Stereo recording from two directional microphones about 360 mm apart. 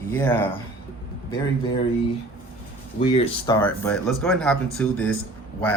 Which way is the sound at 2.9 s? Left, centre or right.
Centre.